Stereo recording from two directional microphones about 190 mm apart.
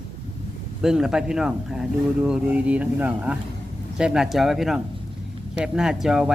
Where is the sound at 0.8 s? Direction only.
5° right (ahead or behind).